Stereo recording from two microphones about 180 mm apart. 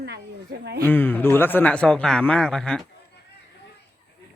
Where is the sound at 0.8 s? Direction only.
10° left (ahead or behind).